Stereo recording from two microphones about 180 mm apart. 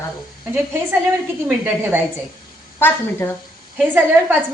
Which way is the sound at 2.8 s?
10° left (ahead or behind).